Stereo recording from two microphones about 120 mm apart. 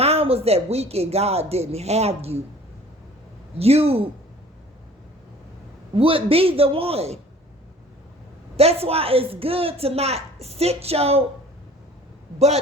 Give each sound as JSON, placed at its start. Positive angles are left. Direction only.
{"t": 0.0, "sound": "speech", "side_deg": -55}
{"t": 3.6, "sound": "a man's voice", "side_deg": -55}
{"t": 5.9, "sound": "a man's voice", "side_deg": -50}
{"t": 8.5, "sound": "speech", "side_deg": -55}